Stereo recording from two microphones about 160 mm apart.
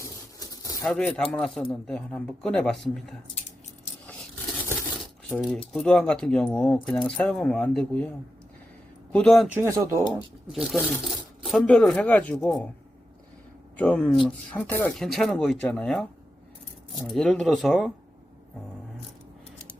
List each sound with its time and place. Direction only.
0.0 s a sound: 20° left (ahead or behind)
0.9 s speech: 5° left (ahead or behind)
4.0 s scrape: 5° left (ahead or behind)
5.3 s speech: centre (ahead or behind)
9.1 s speech: 5° left (ahead or behind)
9.6 s speech: 20° right (ahead or behind)
10.5 s speech: centre (ahead or behind)
13.7 s speech: 10° left (ahead or behind)